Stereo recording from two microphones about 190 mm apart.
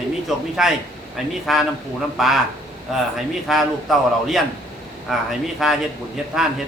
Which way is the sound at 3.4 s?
Centre (ahead or behind).